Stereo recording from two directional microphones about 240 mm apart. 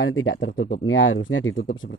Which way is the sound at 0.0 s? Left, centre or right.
Left.